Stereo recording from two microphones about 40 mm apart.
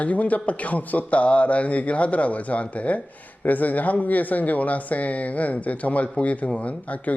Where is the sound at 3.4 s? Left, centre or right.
Left.